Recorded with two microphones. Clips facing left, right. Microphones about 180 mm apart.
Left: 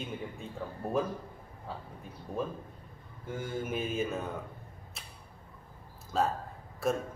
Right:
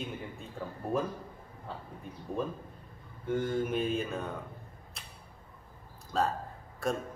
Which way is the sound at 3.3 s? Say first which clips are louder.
Right 5 dB; 5° left (ahead or behind).